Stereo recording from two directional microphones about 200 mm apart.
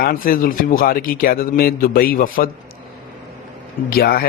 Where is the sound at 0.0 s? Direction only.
45° left (ahead or behind).